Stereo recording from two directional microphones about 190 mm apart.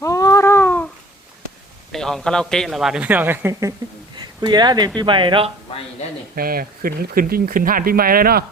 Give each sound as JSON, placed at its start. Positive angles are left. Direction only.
{"t": 0.0, "sound": "a sound", "side_deg": 15}
{"t": 1.9, "sound": "a man's voice", "side_deg": 0}
{"t": 6.3, "sound": "speech", "side_deg": -50}